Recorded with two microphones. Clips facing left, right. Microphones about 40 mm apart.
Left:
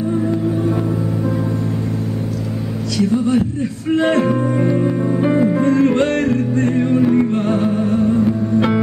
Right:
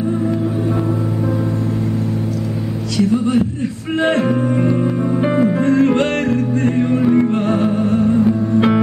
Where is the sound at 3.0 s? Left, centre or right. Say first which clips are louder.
Right 1 dB; centre.